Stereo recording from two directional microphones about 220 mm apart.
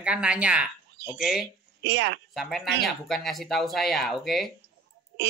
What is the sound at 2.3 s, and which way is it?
Speech, centre (ahead or behind).